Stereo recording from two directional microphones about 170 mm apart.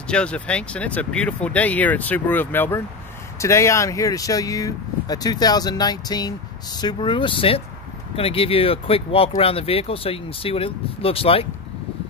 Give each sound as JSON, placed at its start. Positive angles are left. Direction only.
{"t": 0.0, "sound": "speech", "side_deg": 5}